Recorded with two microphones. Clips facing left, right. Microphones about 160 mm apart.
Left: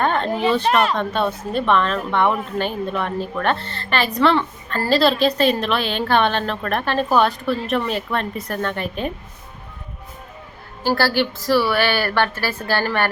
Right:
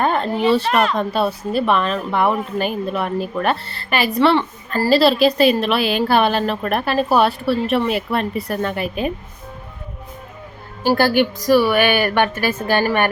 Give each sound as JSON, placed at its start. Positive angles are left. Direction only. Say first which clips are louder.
{"t": 0.0, "sound": "a sound", "louder": "right 1 dB", "side_deg": -10}
{"t": 0.9, "sound": "a woman's voice", "louder": "right 2 dB", "side_deg": -5}
{"t": 10.8, "sound": "a woman's voice", "louder": "right 4 dB", "side_deg": -15}